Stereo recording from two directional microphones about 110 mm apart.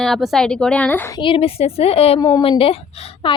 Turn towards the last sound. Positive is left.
turn(degrees=50)  # may be behind; listen again after turning